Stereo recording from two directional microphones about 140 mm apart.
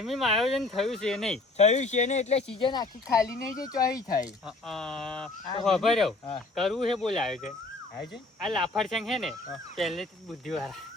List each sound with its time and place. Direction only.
0.0 s speech: centre (ahead or behind)
1.5 s speech: 55° left (ahead or behind)
2.6 s speech: 30° left (ahead or behind)
4.2 s speech: centre (ahead or behind)